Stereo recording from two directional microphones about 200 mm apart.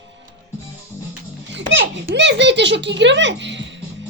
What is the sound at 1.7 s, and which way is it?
Giggle, 60° right (ahead or behind).